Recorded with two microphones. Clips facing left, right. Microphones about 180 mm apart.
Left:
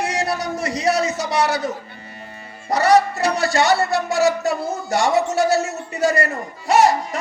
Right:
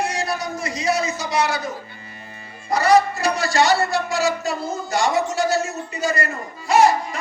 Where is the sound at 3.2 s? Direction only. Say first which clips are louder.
Left 1 dB; 70° left (ahead or behind).